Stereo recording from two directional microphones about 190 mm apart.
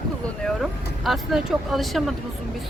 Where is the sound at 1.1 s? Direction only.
Centre (ahead or behind).